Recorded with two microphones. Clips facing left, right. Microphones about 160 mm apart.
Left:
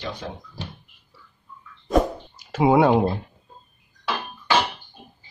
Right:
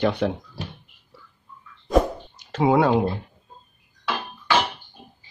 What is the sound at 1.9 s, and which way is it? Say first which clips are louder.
Plop: right 1 dB; 5° left (ahead or behind).